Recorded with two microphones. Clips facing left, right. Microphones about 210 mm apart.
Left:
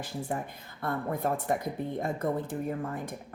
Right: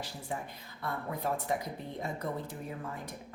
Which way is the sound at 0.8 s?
50° left (ahead or behind).